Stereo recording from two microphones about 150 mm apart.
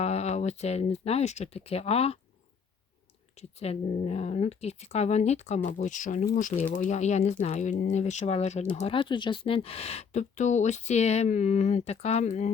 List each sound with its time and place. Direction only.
0.0 s speech: 45° left (ahead or behind)
3.3 s speech: 45° left (ahead or behind)
9.0 s speech: 30° left (ahead or behind); by 12.5 s 50° left (ahead or behind)